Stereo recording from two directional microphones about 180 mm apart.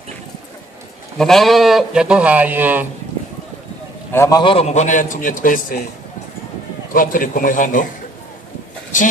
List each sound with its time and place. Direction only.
1.1 s speech: centre (ahead or behind)
4.1 s a man's voice: 15° left (ahead or behind)
4.4 s a man's voice: 30° left (ahead or behind); by 5.9 s 50° left (ahead or behind)
6.9 s a man's voice: 50° left (ahead or behind)